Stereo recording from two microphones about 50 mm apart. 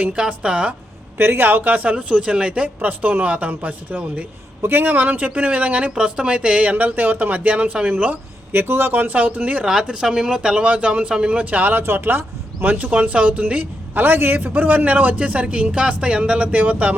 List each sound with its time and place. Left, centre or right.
0.0 s a man's voice: right
1.2 s a man's voice: right
8.1 s speech: right
8.9 s speech: right
9.8 s speech: centre
10.6 s a man's voice: right
11.8 s speech: right
14.0 s a man's voice: right